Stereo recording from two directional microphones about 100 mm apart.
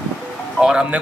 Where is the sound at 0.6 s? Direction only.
10° right (ahead or behind).